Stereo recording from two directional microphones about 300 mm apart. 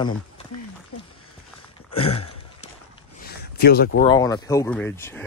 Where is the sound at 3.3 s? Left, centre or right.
Left.